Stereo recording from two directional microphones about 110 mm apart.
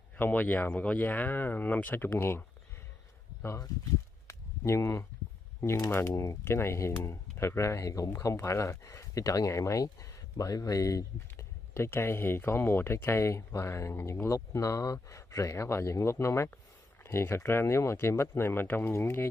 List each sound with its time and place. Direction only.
0.2 s speech: 15° left (ahead or behind)
4.3 s a sound: 25° left (ahead or behind)
5.6 s speech: 30° left (ahead or behind)